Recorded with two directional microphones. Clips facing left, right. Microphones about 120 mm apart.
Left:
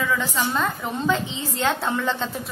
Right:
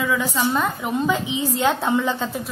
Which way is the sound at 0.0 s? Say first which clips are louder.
Right 3 dB; 10° right (ahead or behind).